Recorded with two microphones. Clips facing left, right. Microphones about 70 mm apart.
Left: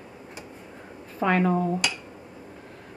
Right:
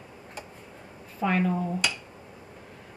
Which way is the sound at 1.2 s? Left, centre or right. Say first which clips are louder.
Left 3 dB; left.